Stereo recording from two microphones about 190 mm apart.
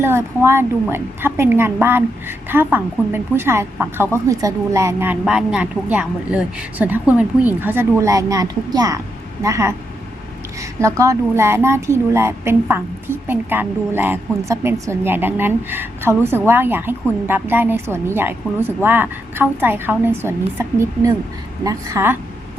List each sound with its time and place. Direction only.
0.0 s a woman's voice: 10° right (ahead or behind)